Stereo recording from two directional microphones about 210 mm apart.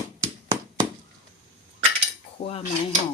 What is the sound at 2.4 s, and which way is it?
Speech, 50° left (ahead or behind).